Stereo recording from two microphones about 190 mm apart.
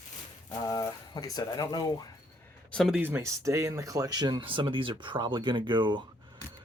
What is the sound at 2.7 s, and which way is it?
Speech, centre (ahead or behind).